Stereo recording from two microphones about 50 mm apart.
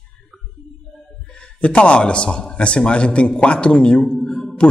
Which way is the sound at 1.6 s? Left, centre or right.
Left.